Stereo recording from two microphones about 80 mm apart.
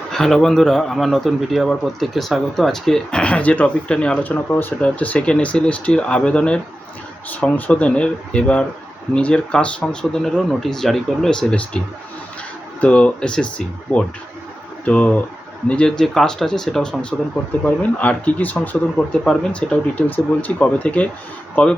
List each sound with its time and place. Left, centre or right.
0.1 s a man's voice: centre
12.8 s a man's voice: centre
19.2 s speech: centre
19.7 s a man's voice: centre